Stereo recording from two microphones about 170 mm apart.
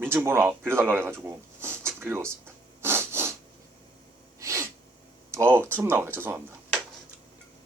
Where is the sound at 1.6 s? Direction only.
15° right (ahead or behind).